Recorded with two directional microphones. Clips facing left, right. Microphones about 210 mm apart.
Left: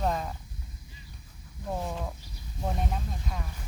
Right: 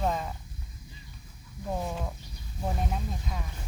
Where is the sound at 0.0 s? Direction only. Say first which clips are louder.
Even; centre (ahead or behind).